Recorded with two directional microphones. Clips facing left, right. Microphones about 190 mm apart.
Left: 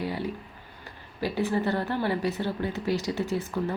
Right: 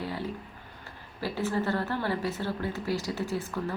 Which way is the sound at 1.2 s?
15° left (ahead or behind).